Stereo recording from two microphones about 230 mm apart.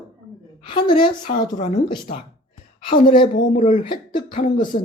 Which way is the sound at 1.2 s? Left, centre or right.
Left.